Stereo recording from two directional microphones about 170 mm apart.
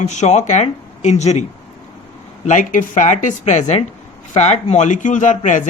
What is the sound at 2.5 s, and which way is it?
A man's voice, 45° left (ahead or behind).